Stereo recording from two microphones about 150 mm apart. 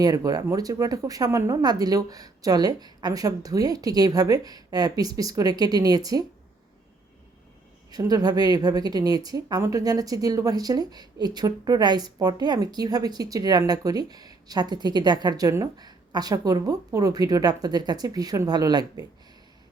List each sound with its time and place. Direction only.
0.0 s a woman's voice: 25° right (ahead or behind)
7.9 s a woman's voice: 25° right (ahead or behind)